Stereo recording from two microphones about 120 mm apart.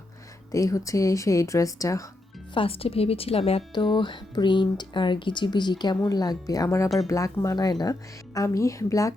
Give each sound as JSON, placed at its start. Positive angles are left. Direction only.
{"t": 0.5, "sound": "speech", "side_deg": 30}
{"t": 2.6, "sound": "a woman's voice", "side_deg": 50}